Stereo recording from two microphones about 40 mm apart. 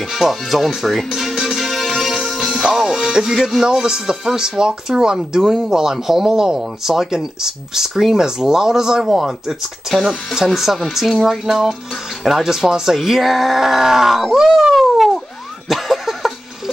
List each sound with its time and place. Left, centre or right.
0.1 s music: centre
2.6 s music: centre
3.2 s speech: centre
3.8 s speech: centre
15.7 s a sound: centre